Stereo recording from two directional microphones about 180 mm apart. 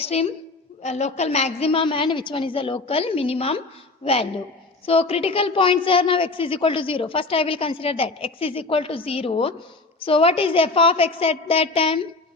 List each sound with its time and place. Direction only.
0.0 s a woman's voice: 35° left (ahead or behind)